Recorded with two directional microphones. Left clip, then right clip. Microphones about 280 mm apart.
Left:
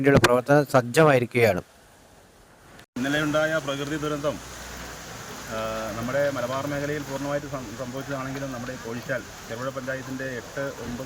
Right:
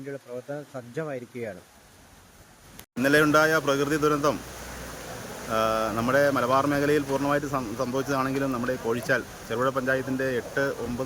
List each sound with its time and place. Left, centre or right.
0.0 s speech: left
3.0 s speech: centre
5.5 s speech: centre